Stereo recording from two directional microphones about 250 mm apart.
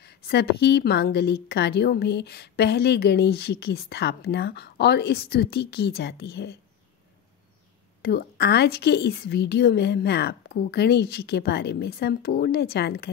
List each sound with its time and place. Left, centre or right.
0.0 s a woman's voice: left
8.0 s a woman's voice: left